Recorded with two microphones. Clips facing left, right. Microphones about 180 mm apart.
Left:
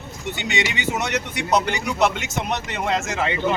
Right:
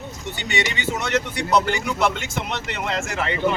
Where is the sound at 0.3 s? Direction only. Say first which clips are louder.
Even; 20° left (ahead or behind).